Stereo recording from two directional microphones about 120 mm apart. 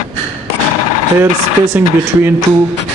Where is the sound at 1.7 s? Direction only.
15° right (ahead or behind).